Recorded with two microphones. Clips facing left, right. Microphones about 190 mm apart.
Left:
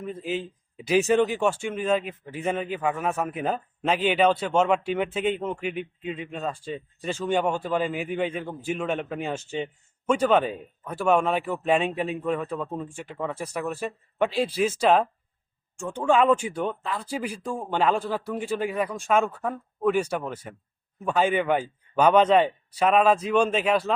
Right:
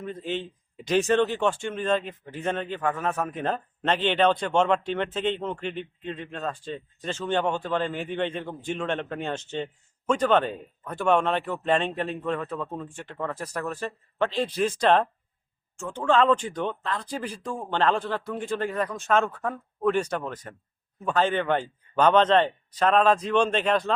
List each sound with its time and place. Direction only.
0.0 s a man's voice: 5° left (ahead or behind)